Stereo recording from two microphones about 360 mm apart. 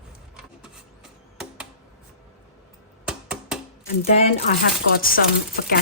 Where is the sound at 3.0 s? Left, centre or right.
Centre.